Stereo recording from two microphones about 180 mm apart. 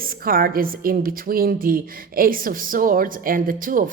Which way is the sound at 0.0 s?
55° right (ahead or behind).